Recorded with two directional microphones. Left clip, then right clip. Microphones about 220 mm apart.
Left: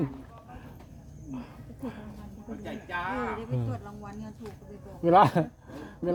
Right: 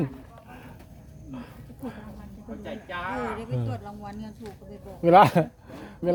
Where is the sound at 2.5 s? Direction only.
20° right (ahead or behind).